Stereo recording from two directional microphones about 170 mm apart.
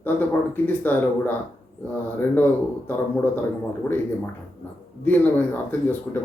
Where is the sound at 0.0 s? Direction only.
10° left (ahead or behind).